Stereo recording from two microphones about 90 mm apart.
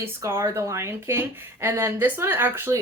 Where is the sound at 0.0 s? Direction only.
30° right (ahead or behind).